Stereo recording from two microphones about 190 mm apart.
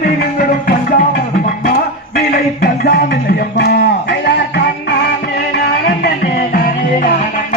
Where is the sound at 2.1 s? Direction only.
55° left (ahead or behind).